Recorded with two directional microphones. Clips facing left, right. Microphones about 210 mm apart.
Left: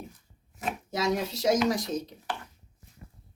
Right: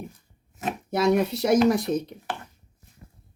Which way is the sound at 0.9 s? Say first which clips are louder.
Right 8 dB; 60° right (ahead or behind).